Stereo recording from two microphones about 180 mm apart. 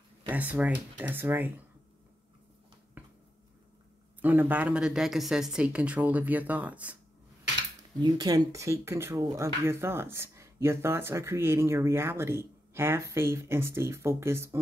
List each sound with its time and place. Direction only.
0.3 s speech: 10° right (ahead or behind)
4.2 s speech: 10° right (ahead or behind)
8.0 s speech: 20° right (ahead or behind)